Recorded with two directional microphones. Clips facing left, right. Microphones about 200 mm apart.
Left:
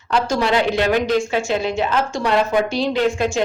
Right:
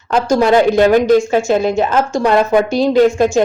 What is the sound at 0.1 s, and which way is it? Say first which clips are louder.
A woman's voice: right 7 dB; 45° right (ahead or behind).